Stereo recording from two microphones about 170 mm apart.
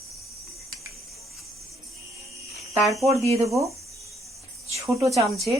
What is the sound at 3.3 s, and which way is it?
Speech, 20° right (ahead or behind).